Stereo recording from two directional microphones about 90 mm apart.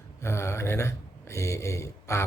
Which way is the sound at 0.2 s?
30° left (ahead or behind).